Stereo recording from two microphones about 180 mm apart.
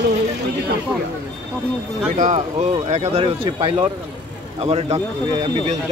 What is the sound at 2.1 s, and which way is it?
Speech, 40° right (ahead or behind).